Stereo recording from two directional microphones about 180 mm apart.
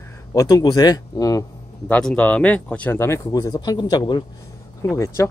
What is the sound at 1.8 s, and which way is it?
Speech, 5° left (ahead or behind).